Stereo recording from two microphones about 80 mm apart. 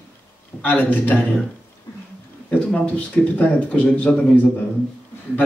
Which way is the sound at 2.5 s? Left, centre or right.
Centre.